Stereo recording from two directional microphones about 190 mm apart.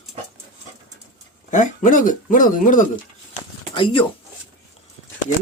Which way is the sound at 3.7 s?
25° left (ahead or behind).